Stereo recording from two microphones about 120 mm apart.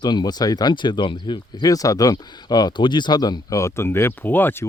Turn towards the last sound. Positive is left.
turn(degrees=15)  # may be behind; listen again after turning